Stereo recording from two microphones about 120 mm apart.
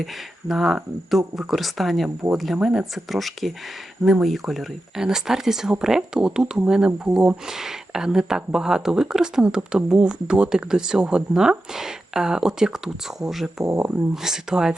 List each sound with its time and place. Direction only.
0.0 s speech: 5° right (ahead or behind)
13.7 s speech: 25° right (ahead or behind)
14.2 s speech: 5° right (ahead or behind)